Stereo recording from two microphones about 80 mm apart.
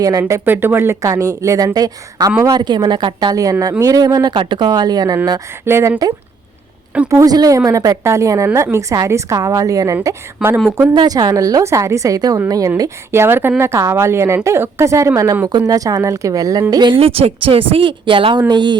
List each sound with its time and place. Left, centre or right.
0.0 s a woman's voice: right
0.4 s speech: right
1.0 s a woman's voice: right
1.6 s a woman's voice: right
4.4 s a woman's voice: right
5.6 s a woman's voice: right
6.9 s a woman's voice: centre
7.3 s a woman's voice: right
10.4 s speech: centre
10.9 s a woman's voice: right
11.6 s a woman's voice: right
13.1 s a woman's voice: right
15.4 s a woman's voice: right
17.4 s speech: right